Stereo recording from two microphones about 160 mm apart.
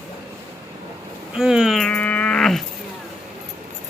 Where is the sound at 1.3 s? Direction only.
5° right (ahead or behind).